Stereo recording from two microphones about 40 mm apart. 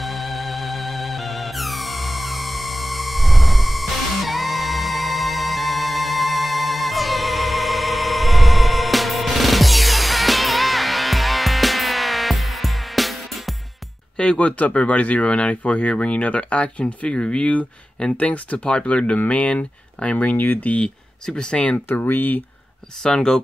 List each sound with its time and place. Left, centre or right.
0.0 s music: centre
14.1 s a sound: left
14.7 s speech: left
17.0 s speech: left
18.6 s speech: left
20.8 s speech: left
21.9 s speech: left
23.0 s speech: centre